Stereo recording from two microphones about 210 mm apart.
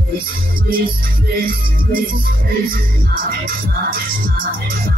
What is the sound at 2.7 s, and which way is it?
Music, 45° right (ahead or behind).